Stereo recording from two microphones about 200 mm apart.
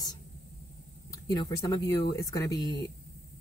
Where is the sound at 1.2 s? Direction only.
20° left (ahead or behind).